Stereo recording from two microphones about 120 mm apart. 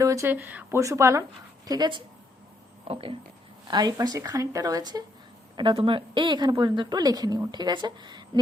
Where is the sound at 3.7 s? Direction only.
35° right (ahead or behind).